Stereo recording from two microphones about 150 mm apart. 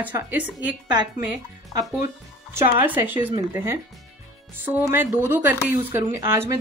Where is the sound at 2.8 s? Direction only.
15° right (ahead or behind).